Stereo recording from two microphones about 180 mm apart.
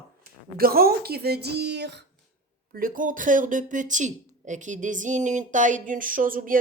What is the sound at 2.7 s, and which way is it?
A woman's voice, 50° right (ahead or behind).